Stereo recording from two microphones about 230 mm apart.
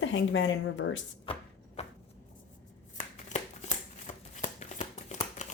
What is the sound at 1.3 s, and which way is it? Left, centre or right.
Chopping, left.